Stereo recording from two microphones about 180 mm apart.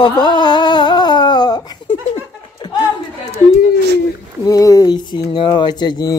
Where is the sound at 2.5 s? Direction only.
25° left (ahead or behind).